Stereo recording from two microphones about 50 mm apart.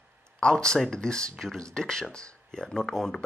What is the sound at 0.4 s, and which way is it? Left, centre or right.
Speech, centre.